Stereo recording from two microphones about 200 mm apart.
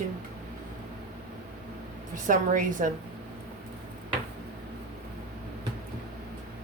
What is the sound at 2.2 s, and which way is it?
Speech, 40° right (ahead or behind).